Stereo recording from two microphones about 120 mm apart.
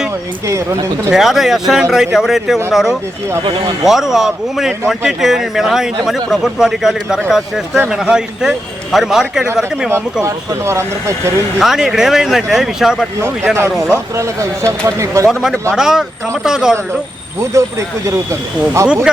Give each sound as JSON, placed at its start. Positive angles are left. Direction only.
{"t": 0.4, "sound": "speech", "side_deg": -25}
{"t": 1.1, "sound": "a man's voice", "side_deg": 0}
{"t": 10.2, "sound": "speech", "side_deg": -25}
{"t": 11.6, "sound": "a man's voice", "side_deg": -5}
{"t": 13.2, "sound": "speech", "side_deg": -20}
{"t": 15.3, "sound": "a man's voice", "side_deg": 0}
{"t": 17.5, "sound": "speech", "side_deg": -25}